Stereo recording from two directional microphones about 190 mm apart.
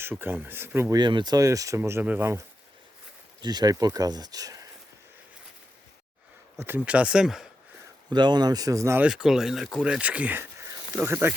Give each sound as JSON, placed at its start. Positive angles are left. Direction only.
{"t": 0.0, "sound": "speech", "side_deg": -10}
{"t": 3.4, "sound": "speech", "side_deg": -20}
{"t": 6.6, "sound": "speech", "side_deg": -10}
{"t": 8.1, "sound": "speech", "side_deg": -25}